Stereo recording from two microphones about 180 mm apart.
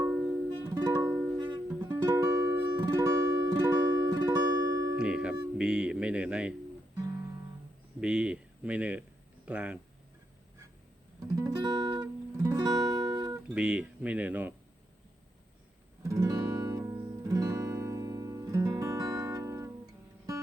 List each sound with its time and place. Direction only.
0.0 s music: 5° right (ahead or behind)
4.9 s music: 5° right (ahead or behind)
5.5 s speech: 5° right (ahead or behind)
8.0 s speech: 5° right (ahead or behind)
11.3 s music: 20° right (ahead or behind)
13.5 s speech: 5° right (ahead or behind)
16.0 s music: 20° right (ahead or behind)